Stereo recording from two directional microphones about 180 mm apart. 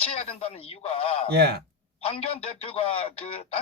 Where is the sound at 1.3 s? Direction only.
60° right (ahead or behind).